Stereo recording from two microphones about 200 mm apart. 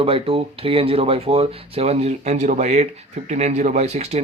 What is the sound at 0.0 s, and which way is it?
A man's voice, 30° right (ahead or behind).